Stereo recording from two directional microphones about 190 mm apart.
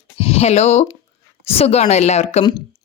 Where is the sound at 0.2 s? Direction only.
30° left (ahead or behind).